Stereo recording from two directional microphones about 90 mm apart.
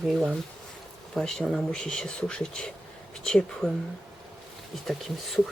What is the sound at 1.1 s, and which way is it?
Speech, 5° left (ahead or behind).